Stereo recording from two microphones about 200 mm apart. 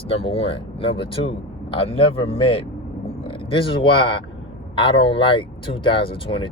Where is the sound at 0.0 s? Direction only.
30° left (ahead or behind).